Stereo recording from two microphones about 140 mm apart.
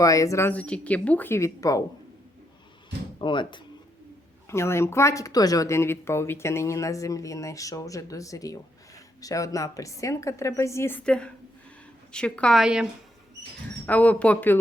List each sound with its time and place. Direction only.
0.0 s a woman's voice: 25° left (ahead or behind)
3.2 s speech: 35° left (ahead or behind)
4.4 s a woman's voice: 20° left (ahead or behind)
12.6 s a woman's voice: 5° right (ahead or behind)
13.8 s a woman's voice: 10° left (ahead or behind)